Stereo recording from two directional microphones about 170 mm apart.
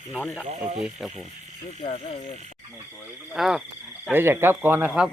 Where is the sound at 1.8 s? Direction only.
45° left (ahead or behind).